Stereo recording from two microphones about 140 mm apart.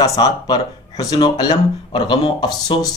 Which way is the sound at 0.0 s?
25° left (ahead or behind).